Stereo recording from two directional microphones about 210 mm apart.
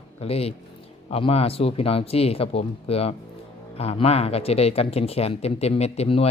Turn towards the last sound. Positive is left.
turn(degrees=30)  # may be behind; listen again after turning